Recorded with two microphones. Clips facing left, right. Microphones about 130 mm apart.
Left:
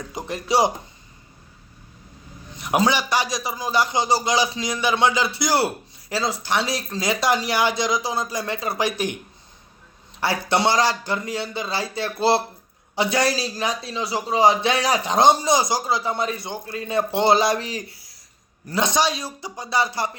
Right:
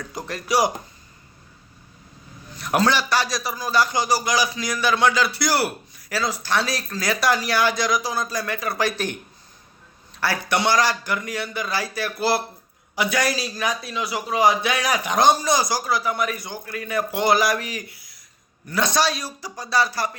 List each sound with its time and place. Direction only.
0.0 s a man's voice: 20° left (ahead or behind)
2.5 s a man's voice: 20° left (ahead or behind)
10.5 s a man's voice: 25° left (ahead or behind)
18.7 s a man's voice: 20° left (ahead or behind)